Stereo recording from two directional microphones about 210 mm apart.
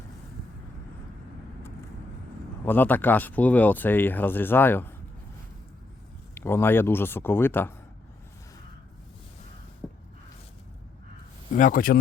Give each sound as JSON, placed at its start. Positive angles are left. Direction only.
{"t": 2.6, "sound": "speech", "side_deg": 10}
{"t": 6.3, "sound": "speech", "side_deg": 10}
{"t": 9.8, "sound": "a sound", "side_deg": 0}
{"t": 11.5, "sound": "speech", "side_deg": 40}